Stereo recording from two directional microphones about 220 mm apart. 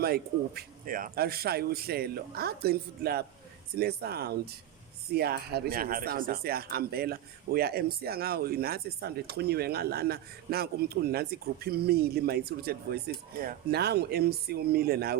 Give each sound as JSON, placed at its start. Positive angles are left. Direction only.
{"t": 0.0, "sound": "speech", "side_deg": -45}